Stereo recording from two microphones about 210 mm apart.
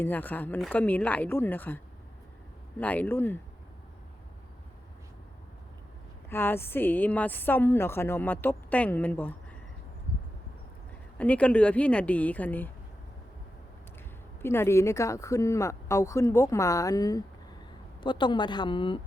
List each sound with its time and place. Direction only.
0.0 s a woman's voice: 10° left (ahead or behind)
6.3 s a woman's voice: 10° left (ahead or behind)
11.2 s a woman's voice: 5° left (ahead or behind)
14.4 s a woman's voice: 10° left (ahead or behind)